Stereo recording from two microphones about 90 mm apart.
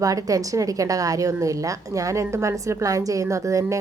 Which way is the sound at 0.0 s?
40° right (ahead or behind).